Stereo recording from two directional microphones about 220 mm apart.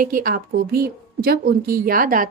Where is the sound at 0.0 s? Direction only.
40° right (ahead or behind).